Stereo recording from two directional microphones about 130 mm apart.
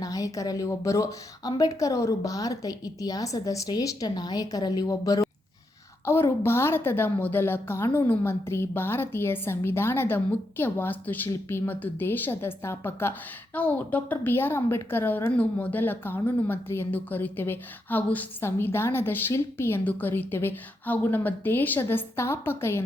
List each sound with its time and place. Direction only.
0.0 s a woman's voice: 25° left (ahead or behind)